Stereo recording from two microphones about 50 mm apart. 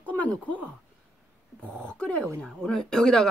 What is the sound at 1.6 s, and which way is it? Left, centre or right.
Speech, left.